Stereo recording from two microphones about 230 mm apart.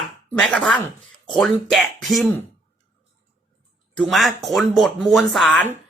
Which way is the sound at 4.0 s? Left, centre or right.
Centre.